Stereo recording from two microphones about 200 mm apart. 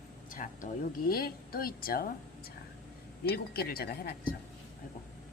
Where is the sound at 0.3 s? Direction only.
45° left (ahead or behind).